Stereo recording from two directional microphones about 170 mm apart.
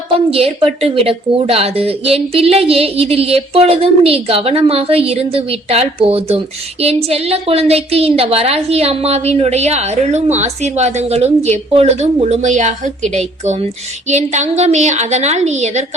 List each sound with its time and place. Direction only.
0.1 s a woman's voice: 35° right (ahead or behind)